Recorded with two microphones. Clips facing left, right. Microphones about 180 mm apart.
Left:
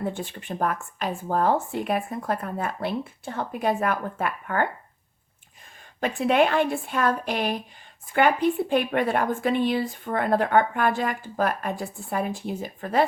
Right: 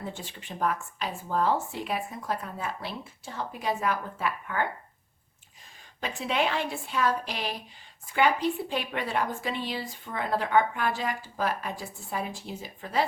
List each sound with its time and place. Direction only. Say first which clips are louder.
0.0 s speech: left 8 dB; 55° left (ahead or behind)
6.0 s speech: left 8 dB; 55° left (ahead or behind)